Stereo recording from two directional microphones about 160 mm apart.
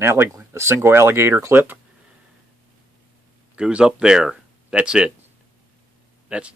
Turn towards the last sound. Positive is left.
turn(degrees=-5)  # may be behind; listen again after turning